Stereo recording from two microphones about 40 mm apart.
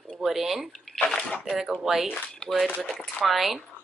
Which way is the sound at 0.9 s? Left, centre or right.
Centre.